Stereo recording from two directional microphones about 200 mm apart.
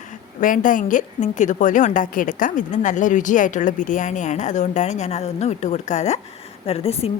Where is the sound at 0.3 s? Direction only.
40° left (ahead or behind).